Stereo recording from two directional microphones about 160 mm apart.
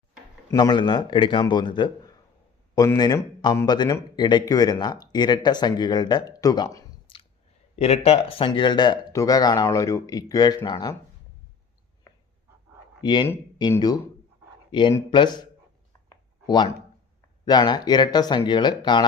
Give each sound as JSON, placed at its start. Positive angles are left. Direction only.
{"t": 0.5, "sound": "speech", "side_deg": 30}
{"t": 7.1, "sound": "chewing", "side_deg": 35}
{"t": 7.8, "sound": "speech", "side_deg": 40}
{"t": 13.0, "sound": "speech", "side_deg": 25}
{"t": 16.0, "sound": "a sound", "side_deg": 25}
{"t": 17.4, "sound": "speech", "side_deg": 25}